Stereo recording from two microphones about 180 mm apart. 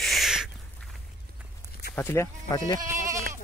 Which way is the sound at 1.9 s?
10° left (ahead or behind).